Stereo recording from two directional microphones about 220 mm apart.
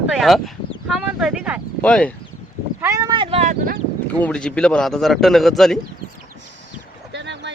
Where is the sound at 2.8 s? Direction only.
15° right (ahead or behind); by 3.7 s 30° right (ahead or behind).